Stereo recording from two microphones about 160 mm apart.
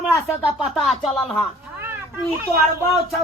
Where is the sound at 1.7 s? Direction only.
15° right (ahead or behind).